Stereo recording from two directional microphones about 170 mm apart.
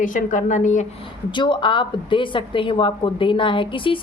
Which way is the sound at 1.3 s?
30° left (ahead or behind).